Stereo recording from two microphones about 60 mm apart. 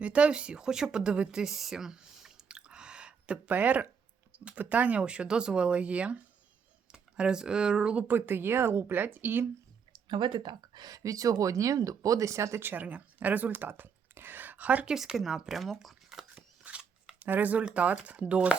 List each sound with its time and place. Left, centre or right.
0.0 s speech: centre
8.0 s speech: right
10.8 s speech: right
12.6 s speech: right
14.8 s speech: centre
16.3 s scissors: right
17.2 s speech: right